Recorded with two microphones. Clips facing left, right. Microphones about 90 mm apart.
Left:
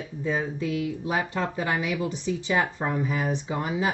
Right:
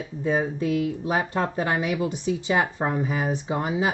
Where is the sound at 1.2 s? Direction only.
40° right (ahead or behind).